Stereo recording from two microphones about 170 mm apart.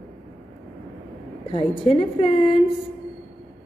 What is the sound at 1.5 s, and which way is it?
A woman's voice, 35° left (ahead or behind).